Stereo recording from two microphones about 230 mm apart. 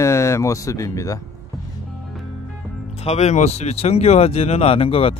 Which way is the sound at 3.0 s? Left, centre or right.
Left.